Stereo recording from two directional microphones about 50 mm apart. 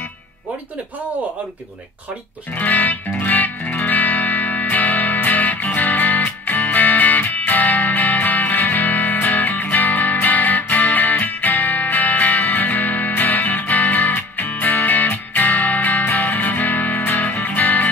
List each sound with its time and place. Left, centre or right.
2.5 s music: left